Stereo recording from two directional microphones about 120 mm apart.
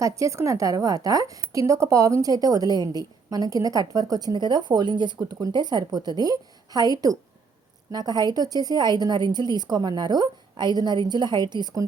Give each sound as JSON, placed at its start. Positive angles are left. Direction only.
{"t": 0.0, "sound": "a woman's voice", "side_deg": -25}